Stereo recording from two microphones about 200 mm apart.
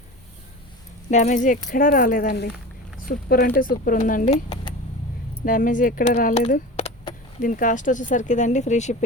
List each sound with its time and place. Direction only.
1.1 s speech: 35° left (ahead or behind)